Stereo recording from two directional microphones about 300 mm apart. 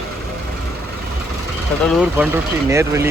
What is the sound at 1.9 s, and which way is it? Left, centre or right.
Speech, centre.